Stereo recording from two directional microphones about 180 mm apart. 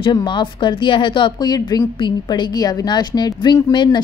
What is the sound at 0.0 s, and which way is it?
Speech, 25° left (ahead or behind).